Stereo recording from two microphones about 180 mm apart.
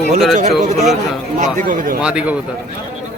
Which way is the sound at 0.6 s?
40° right (ahead or behind).